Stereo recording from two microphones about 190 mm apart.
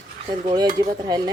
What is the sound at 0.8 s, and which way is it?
Speech, 20° right (ahead or behind).